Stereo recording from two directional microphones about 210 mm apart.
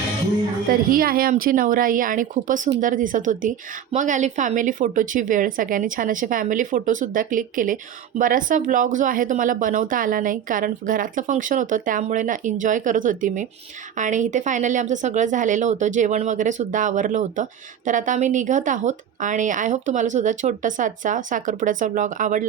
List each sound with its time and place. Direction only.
0.7 s speech: 45° right (ahead or behind)